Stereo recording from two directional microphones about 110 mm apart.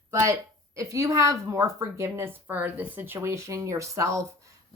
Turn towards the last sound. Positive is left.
turn(degrees=-25)  # may be behind; listen again after turning